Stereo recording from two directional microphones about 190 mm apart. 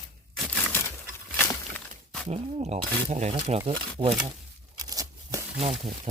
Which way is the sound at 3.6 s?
20° right (ahead or behind).